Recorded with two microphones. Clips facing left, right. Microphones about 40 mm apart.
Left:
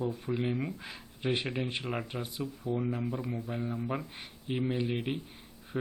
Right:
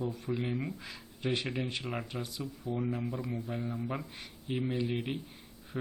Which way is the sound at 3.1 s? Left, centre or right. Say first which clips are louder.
Left 1 dB; centre.